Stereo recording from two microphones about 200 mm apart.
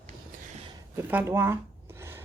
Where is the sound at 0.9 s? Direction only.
10° right (ahead or behind).